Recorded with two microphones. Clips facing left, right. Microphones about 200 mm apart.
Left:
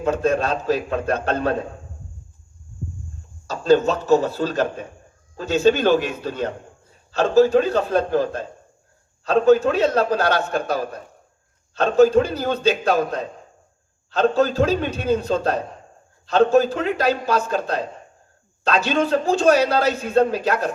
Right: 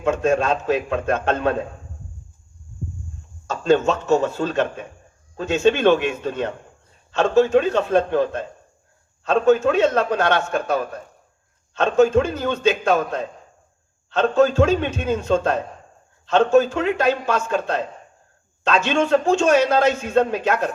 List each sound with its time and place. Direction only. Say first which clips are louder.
0.0 s a man's voice: right 1 dB; 35° left (ahead or behind)
3.4 s a man's voice: left 1 dB; 35° left (ahead or behind)